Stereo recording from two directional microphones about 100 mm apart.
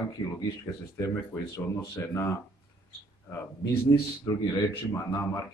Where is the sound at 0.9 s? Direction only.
30° left (ahead or behind).